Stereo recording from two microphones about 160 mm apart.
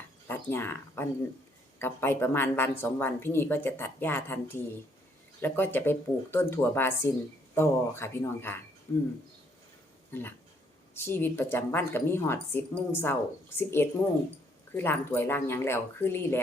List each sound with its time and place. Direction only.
0.3 s speech: 15° left (ahead or behind)
10.1 s speech: 15° left (ahead or behind)